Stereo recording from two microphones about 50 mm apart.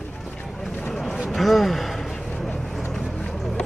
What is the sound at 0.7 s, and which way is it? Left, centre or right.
Speech, centre.